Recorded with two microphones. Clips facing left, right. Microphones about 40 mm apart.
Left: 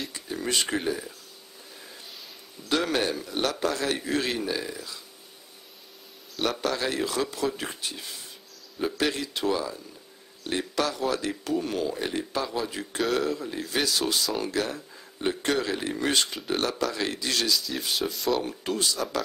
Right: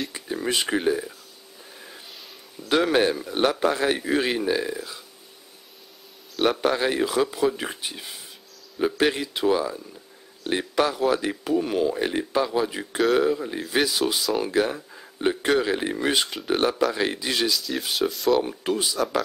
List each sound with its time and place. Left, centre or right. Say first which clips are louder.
0.1 s speech: right 3 dB; centre
2.7 s a man's voice: right 5 dB; centre
6.4 s a man's voice: right 6 dB; right
17.5 s speech: right 2 dB; centre
18.4 s speech: right 3 dB; centre